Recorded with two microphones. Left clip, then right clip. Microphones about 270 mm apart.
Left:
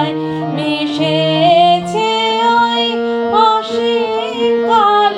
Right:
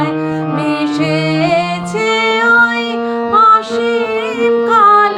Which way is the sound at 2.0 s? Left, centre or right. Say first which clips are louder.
Right 5 dB; centre.